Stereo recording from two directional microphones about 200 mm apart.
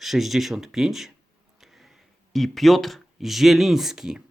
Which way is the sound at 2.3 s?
Centre (ahead or behind).